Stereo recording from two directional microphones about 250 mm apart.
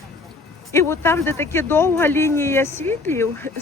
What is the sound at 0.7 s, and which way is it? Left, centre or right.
Speech, centre.